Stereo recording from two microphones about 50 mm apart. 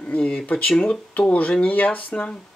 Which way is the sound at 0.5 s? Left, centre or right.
Left.